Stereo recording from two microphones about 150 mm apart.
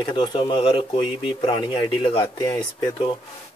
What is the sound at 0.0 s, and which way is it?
Speech, 30° left (ahead or behind).